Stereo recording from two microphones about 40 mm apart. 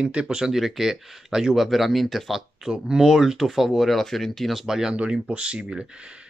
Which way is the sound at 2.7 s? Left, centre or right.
Centre.